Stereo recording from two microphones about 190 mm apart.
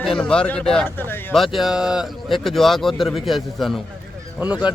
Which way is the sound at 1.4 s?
Centre (ahead or behind).